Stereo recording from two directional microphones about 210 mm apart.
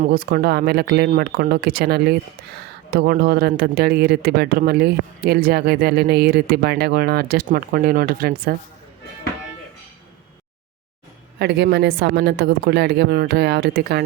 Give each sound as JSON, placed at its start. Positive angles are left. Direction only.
{"t": 0.0, "sound": "speech", "side_deg": -40}
{"t": 11.3, "sound": "speech", "side_deg": -55}